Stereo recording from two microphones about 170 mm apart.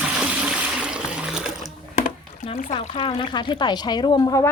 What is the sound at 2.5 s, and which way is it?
Speech, 55° left (ahead or behind).